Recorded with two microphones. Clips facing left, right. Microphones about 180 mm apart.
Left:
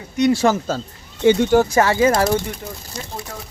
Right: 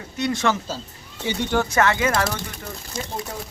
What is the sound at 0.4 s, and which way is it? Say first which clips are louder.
Speech: left 6 dB; 45° left (ahead or behind).